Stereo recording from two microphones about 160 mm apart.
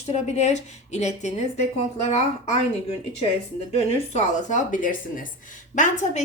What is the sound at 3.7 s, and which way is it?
Speech, 45° left (ahead or behind).